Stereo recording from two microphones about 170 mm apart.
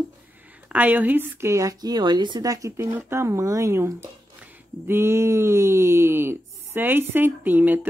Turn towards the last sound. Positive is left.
turn(degrees=-10)  # may be behind; listen again after turning